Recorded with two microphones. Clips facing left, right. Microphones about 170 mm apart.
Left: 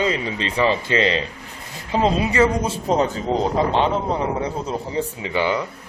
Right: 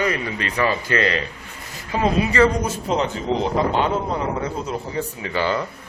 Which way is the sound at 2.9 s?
40° left (ahead or behind).